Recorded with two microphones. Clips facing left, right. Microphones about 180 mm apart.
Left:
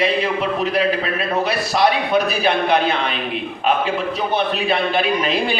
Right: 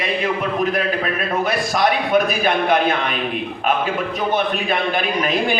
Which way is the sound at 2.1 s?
45° right (ahead or behind).